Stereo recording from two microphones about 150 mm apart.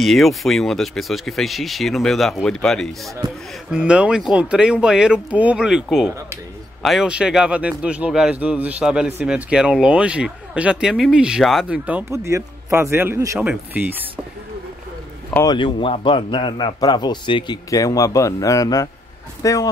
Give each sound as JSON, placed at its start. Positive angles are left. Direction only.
{"t": 0.0, "sound": "speech", "side_deg": 0}
{"t": 12.3, "sound": "a man's voice", "side_deg": -20}
{"t": 15.4, "sound": "a man's voice", "side_deg": 30}